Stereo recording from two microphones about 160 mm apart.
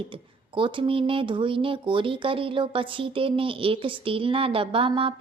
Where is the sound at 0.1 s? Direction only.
30° right (ahead or behind).